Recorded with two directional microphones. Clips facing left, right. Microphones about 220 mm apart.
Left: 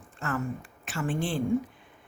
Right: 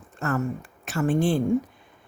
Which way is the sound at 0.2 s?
40° right (ahead or behind).